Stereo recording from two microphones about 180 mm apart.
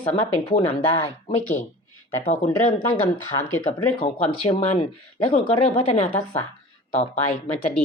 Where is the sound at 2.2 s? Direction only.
40° left (ahead or behind).